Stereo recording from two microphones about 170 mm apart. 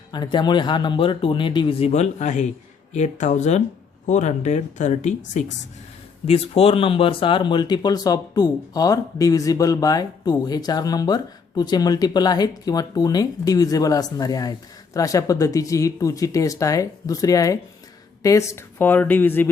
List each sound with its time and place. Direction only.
0.1 s speech: 25° left (ahead or behind)